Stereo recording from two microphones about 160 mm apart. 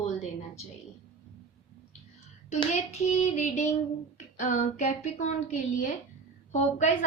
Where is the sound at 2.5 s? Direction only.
45° left (ahead or behind).